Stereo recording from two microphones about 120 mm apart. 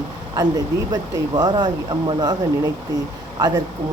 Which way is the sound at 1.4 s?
35° right (ahead or behind).